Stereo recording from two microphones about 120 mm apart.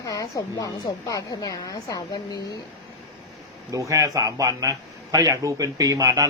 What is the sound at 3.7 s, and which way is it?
A man's voice, 25° right (ahead or behind).